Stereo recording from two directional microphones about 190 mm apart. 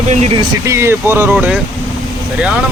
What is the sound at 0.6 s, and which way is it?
Speech, 15° right (ahead or behind).